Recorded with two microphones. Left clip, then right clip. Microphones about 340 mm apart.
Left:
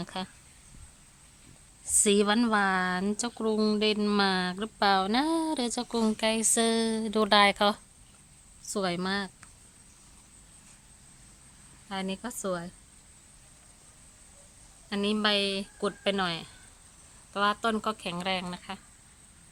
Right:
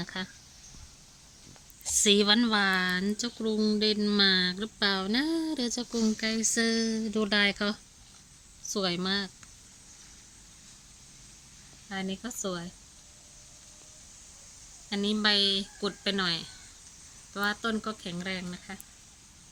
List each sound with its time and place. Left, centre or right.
0.0 s speech: centre
2.0 s speech: centre
5.9 s speech: left
6.1 s speech: centre
11.9 s speech: centre
14.8 s speech: centre